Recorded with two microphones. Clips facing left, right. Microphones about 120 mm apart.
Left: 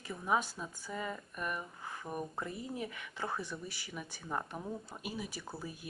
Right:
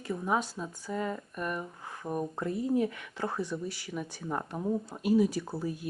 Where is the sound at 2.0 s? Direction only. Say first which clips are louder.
Right 8 dB; 25° right (ahead or behind).